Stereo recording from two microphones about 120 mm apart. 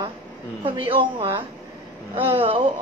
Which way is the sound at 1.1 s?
50° right (ahead or behind).